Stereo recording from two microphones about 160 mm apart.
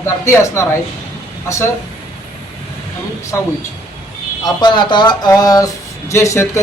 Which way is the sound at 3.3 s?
15° left (ahead or behind).